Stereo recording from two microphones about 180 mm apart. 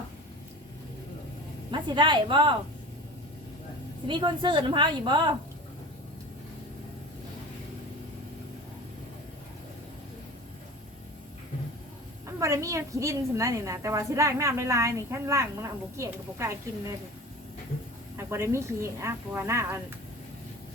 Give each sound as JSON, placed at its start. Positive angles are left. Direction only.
{"t": 1.7, "sound": "a woman's voice", "side_deg": -25}
{"t": 4.0, "sound": "a woman's voice", "side_deg": -25}
{"t": 12.4, "sound": "a woman's voice", "side_deg": -15}
{"t": 18.2, "sound": "a woman's voice", "side_deg": -15}